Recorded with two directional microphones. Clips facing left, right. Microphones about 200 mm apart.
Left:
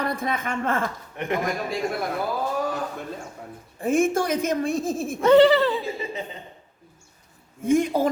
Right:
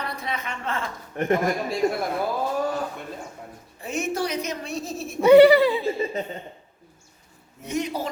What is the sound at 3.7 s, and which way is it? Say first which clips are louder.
A man's voice: left 6 dB; 50° left (ahead or behind).